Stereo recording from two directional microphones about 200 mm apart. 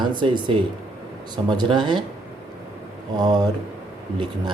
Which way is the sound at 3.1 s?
20° right (ahead or behind).